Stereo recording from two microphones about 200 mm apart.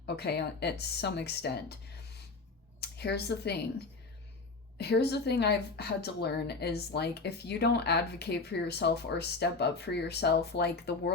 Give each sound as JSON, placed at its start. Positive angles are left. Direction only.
{"t": 0.0, "sound": "a woman's voice", "side_deg": 55}
{"t": 2.8, "sound": "a woman's voice", "side_deg": 55}